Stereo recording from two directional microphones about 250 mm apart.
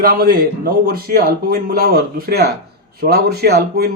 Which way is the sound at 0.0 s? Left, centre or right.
Right.